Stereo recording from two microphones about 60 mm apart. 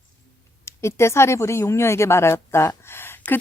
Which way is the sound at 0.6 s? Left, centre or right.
Left.